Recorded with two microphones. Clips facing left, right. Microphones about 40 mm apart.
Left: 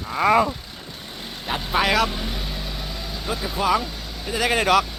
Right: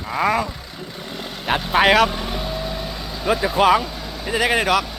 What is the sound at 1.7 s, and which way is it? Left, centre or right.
Speech, right.